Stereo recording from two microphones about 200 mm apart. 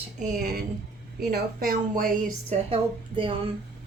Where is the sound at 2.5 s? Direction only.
25° right (ahead or behind).